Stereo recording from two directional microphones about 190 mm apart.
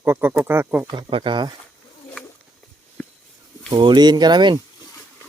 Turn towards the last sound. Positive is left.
turn(degrees=-25)  # may be behind; listen again after turning